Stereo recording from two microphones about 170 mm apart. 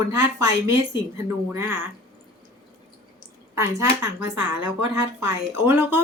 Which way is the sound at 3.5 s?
20° right (ahead or behind).